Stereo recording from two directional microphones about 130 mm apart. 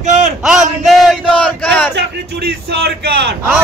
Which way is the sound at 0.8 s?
5° left (ahead or behind).